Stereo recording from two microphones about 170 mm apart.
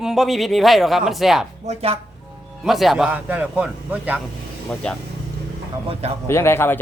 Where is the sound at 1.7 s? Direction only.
35° right (ahead or behind).